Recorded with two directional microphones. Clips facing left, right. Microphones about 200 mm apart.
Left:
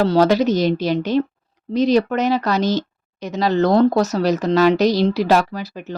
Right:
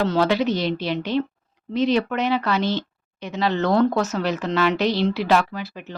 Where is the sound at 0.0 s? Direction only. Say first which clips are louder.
Left 5 dB; 40° left (ahead or behind).